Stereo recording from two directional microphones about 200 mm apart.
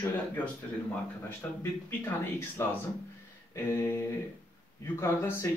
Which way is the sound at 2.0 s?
10° left (ahead or behind).